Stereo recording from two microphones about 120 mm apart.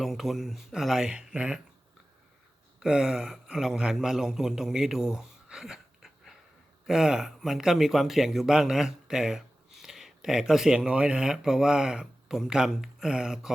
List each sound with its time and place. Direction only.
0.0 s speech: centre (ahead or behind)
2.8 s a man's voice: 5° right (ahead or behind)